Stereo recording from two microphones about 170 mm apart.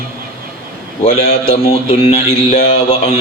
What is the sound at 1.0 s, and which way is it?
Speech, 35° left (ahead or behind).